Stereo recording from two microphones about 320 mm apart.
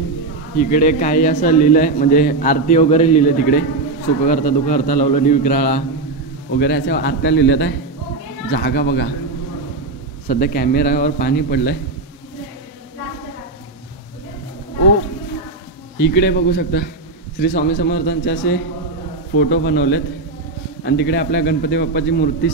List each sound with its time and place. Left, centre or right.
0.6 s a man's voice: left
10.2 s a man's voice: left
16.0 s a man's voice: left